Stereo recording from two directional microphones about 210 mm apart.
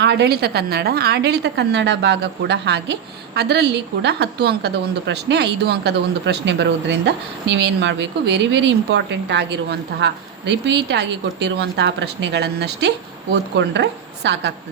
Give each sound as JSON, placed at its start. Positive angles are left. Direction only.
{"t": 0.0, "sound": "a woman's voice", "side_deg": -55}